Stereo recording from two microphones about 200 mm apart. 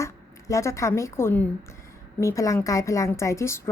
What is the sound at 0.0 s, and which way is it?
A woman's voice, 15° left (ahead or behind).